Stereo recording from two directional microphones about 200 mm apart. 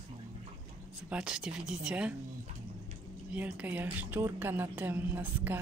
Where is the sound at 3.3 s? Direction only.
5° right (ahead or behind).